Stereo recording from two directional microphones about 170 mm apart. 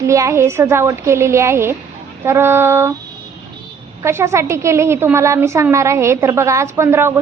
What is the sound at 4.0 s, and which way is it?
A woman's voice, 15° right (ahead or behind).